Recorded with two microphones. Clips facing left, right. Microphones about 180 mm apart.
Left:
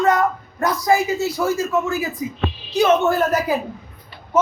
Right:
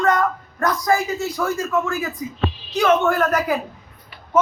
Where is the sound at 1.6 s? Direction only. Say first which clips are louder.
Left 1 dB; 25° left (ahead or behind).